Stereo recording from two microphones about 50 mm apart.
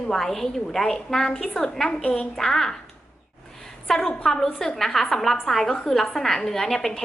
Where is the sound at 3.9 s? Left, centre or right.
Centre.